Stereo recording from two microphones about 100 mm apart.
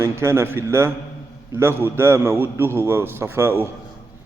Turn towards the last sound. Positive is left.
turn(degrees=-25)  # may be behind; listen again after turning